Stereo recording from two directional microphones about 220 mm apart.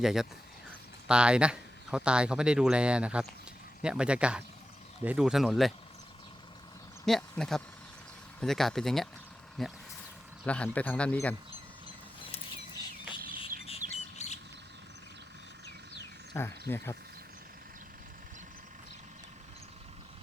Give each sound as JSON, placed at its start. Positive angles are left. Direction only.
{"t": 0.0, "sound": "speech", "side_deg": 0}
{"t": 7.0, "sound": "speech", "side_deg": 0}
{"t": 13.7, "sound": "bird", "side_deg": 30}
{"t": 16.3, "sound": "speech", "side_deg": 10}